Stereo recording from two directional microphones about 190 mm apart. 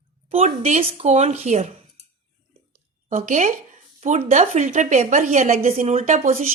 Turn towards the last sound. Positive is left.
turn(degrees=-45)  # may be behind; listen again after turning